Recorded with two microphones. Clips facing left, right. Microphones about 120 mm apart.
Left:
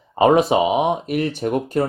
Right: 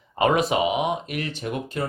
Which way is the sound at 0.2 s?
35° left (ahead or behind).